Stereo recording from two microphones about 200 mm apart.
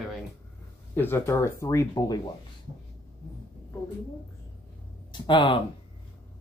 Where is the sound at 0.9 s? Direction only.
10° left (ahead or behind).